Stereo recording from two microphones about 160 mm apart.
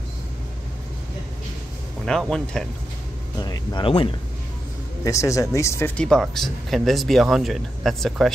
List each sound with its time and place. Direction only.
2.0 s speech: 5° left (ahead or behind)
3.3 s speech: 25° left (ahead or behind)
5.0 s speech: 20° left (ahead or behind); by 8.3 s centre (ahead or behind)